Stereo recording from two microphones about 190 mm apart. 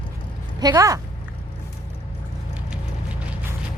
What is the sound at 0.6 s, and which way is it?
Speech, 20° right (ahead or behind).